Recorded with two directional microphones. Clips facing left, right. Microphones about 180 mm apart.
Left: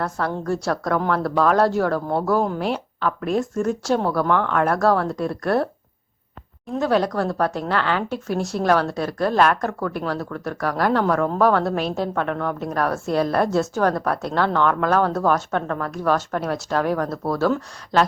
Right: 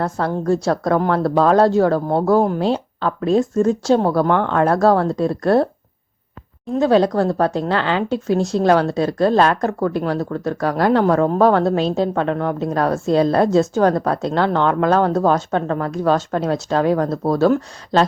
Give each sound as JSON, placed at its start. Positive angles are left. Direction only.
{"t": 0.0, "sound": "speech", "side_deg": -20}
{"t": 6.7, "sound": "speech", "side_deg": -25}